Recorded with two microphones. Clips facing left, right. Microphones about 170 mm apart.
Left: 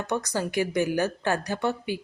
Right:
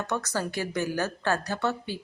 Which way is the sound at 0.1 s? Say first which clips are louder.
Left 5 dB; 15° left (ahead or behind).